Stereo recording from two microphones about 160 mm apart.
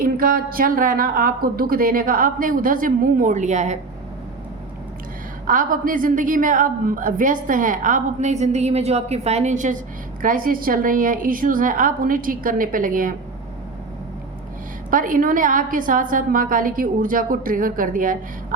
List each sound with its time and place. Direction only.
0.0 s a woman's voice: 65° right (ahead or behind); by 3.8 s 50° right (ahead or behind)
5.5 s a woman's voice: 60° right (ahead or behind)
14.8 s a woman's voice: 60° right (ahead or behind)